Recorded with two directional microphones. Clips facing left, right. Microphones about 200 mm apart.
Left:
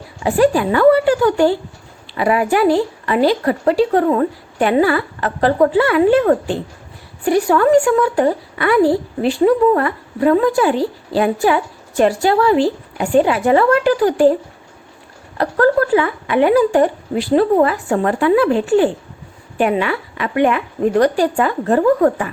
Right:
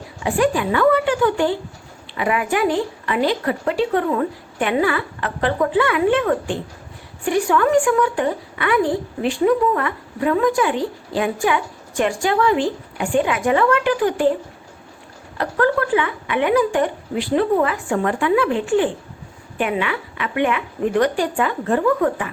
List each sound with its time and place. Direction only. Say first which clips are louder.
0.2 s a woman's voice: left 5 dB; 35° left (ahead or behind)
15.4 s a woman's voice: left 5 dB; 40° left (ahead or behind)